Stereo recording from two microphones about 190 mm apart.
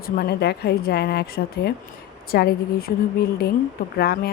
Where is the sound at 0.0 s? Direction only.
55° left (ahead or behind).